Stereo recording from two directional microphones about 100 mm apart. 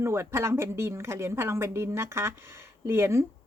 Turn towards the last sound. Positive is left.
turn(degrees=-25)  # may be behind; listen again after turning